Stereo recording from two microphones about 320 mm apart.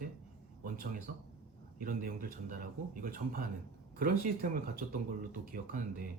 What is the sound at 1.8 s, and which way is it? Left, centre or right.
Speech, right.